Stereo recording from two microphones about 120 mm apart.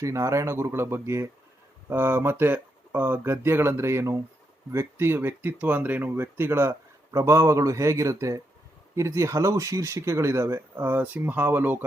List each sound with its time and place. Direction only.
0.0 s speech: 25° right (ahead or behind)